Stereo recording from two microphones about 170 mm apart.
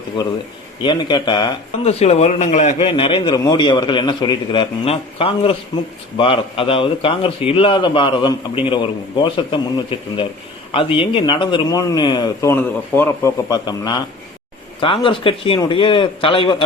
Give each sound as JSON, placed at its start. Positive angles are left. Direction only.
{"t": 0.8, "sound": "speech", "side_deg": 25}
{"t": 1.8, "sound": "a man's voice", "side_deg": 35}
{"t": 2.7, "sound": "a man's voice", "side_deg": 30}